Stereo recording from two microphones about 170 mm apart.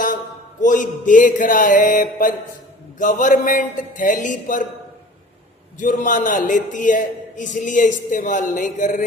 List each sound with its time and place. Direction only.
0.6 s a man's voice: 50° left (ahead or behind)
5.8 s a man's voice: 50° left (ahead or behind)